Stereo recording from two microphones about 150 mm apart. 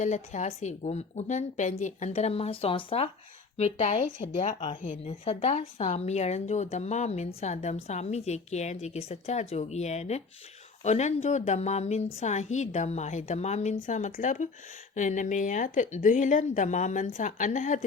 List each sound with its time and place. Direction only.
0.0 s speech: 50° left (ahead or behind)
5.2 s a woman's voice: 40° left (ahead or behind); by 17.7 s 55° left (ahead or behind)